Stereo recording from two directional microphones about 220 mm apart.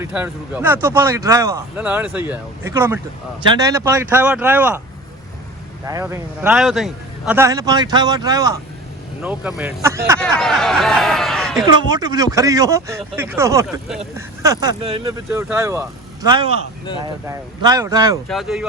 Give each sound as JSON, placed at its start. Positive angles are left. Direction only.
{"t": 0.0, "sound": "speech", "side_deg": -5}
{"t": 5.8, "sound": "speech", "side_deg": -15}
{"t": 9.2, "sound": "speech", "side_deg": -5}
{"t": 10.2, "sound": "speech", "side_deg": 5}
{"t": 11.6, "sound": "speech", "side_deg": -20}
{"t": 15.3, "sound": "speech", "side_deg": -10}
{"t": 18.3, "sound": "speech", "side_deg": 0}